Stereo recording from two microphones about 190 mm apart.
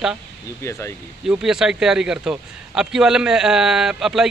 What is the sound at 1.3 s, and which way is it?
A man's voice, 5° right (ahead or behind).